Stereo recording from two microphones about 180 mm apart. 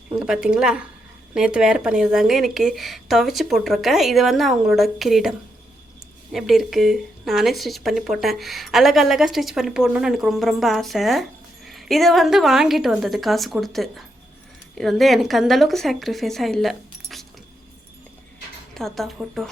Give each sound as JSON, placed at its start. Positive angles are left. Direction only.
{"t": 0.1, "sound": "speech", "side_deg": -5}
{"t": 6.3, "sound": "speech", "side_deg": 0}
{"t": 18.7, "sound": "speech", "side_deg": 0}